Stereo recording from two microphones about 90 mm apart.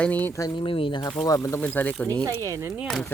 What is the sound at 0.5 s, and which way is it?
Speech, 70° left (ahead or behind).